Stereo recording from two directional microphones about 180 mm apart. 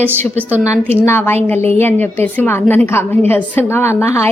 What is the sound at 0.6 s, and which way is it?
A woman's voice, 15° left (ahead or behind).